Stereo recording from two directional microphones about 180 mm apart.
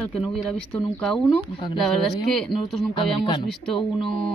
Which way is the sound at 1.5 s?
25° left (ahead or behind).